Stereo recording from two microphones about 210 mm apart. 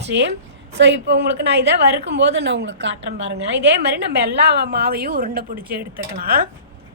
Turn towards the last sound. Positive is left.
turn(degrees=-45)  # may be behind; listen again after turning